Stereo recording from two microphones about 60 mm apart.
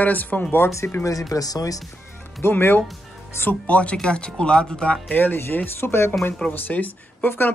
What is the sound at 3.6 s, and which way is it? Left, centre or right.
Speech, left.